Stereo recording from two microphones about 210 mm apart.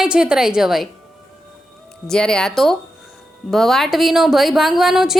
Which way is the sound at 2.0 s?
5° left (ahead or behind).